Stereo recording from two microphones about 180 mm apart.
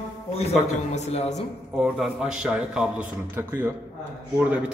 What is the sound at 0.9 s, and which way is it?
Speech, 35° left (ahead or behind).